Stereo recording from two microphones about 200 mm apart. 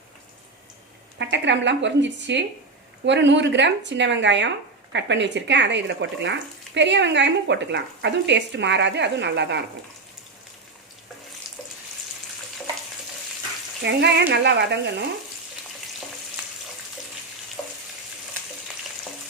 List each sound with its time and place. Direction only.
1.2 s speech: 65° right (ahead or behind)
13.8 s speech: 55° right (ahead or behind)
17.6 s frying: 10° left (ahead or behind)